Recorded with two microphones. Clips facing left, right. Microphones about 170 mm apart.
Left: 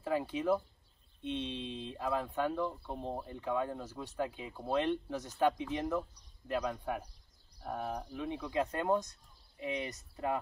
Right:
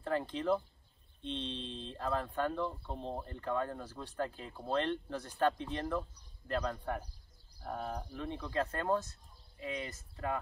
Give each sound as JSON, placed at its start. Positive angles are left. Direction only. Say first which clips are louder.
{"t": 0.0, "sound": "speech", "louder": "left 1 dB", "side_deg": 10}